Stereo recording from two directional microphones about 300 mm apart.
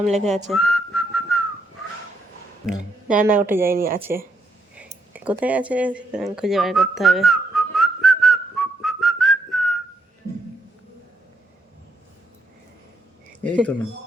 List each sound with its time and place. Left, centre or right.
0.1 s whistling: right
0.5 s whistling: centre
3.2 s speech: centre
3.8 s whistling: right
4.8 s a sound: centre
13.4 s speech: centre